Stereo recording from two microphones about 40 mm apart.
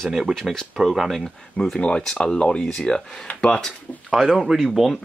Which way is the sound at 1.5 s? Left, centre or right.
Centre.